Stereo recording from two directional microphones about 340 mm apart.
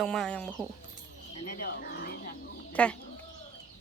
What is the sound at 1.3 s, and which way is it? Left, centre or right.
Speech, left.